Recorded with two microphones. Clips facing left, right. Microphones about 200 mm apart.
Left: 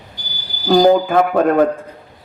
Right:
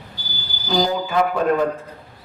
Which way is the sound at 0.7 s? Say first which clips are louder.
Left 9 dB; 55° left (ahead or behind).